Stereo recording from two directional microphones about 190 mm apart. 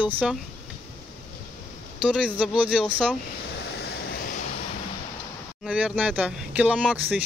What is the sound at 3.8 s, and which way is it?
Vehicle, 50° left (ahead or behind).